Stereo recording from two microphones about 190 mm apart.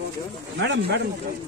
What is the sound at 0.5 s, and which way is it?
Speech, 65° right (ahead or behind).